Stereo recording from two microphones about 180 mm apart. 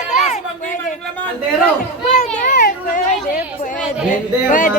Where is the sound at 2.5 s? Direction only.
60° left (ahead or behind).